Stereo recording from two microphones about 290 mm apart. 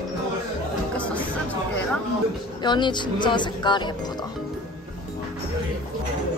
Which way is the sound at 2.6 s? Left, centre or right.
Centre.